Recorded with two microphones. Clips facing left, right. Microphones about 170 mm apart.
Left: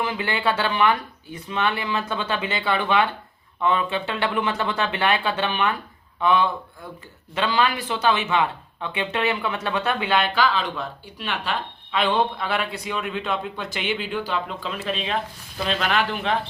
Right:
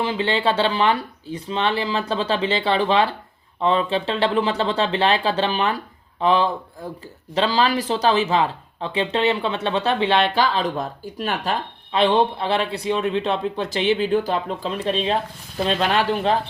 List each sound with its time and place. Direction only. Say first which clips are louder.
0.0 s speech: right 3 dB; 30° right (ahead or behind)